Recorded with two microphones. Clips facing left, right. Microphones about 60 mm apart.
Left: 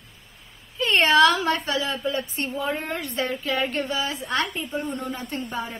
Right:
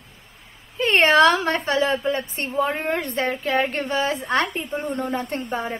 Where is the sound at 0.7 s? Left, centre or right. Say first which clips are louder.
Right 2 dB; right.